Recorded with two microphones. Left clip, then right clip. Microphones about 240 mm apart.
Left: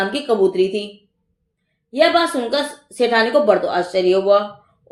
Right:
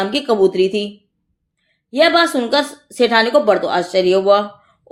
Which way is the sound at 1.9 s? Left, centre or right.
Right.